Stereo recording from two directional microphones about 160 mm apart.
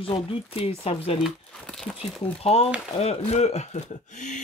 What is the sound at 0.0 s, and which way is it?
Speech, 35° left (ahead or behind).